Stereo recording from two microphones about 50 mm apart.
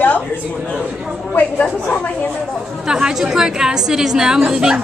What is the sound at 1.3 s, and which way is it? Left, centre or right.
A woman's voice, left.